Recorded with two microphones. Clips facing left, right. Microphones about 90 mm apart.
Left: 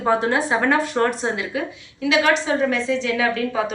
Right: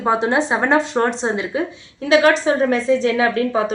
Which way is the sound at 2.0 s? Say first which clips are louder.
Right 5 dB; 35° right (ahead or behind).